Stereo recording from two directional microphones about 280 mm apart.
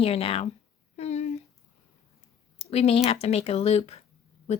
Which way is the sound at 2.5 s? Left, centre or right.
Left.